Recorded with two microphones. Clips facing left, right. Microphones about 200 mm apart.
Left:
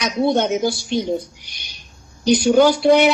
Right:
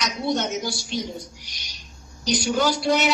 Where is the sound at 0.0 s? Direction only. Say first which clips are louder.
Left 7 dB; 55° left (ahead or behind).